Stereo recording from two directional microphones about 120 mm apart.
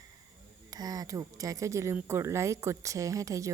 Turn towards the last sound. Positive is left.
turn(degrees=-25)  # may be behind; listen again after turning